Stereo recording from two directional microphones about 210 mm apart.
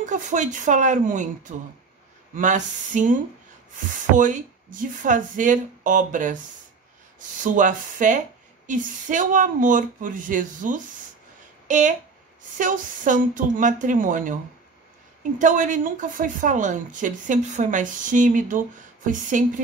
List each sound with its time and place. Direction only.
0.0 s a woman's voice: 35° right (ahead or behind)
4.2 s a woman's voice: 40° right (ahead or behind)
11.6 s a sound: 35° right (ahead or behind)
12.5 s a woman's voice: 40° right (ahead or behind)